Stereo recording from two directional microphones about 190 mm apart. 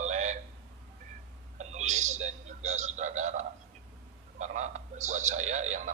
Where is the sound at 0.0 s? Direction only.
40° right (ahead or behind).